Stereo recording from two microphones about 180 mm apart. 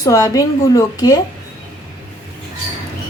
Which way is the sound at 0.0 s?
20° left (ahead or behind).